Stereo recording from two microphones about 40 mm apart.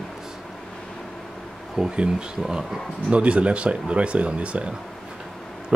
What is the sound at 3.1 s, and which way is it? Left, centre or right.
Speech, right.